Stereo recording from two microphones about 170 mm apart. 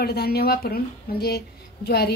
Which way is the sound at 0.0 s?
70° left (ahead or behind).